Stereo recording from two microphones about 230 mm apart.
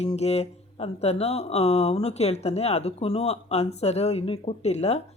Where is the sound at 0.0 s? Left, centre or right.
Left.